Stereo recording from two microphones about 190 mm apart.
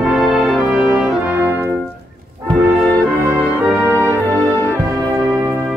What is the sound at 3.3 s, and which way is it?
Music, 15° right (ahead or behind).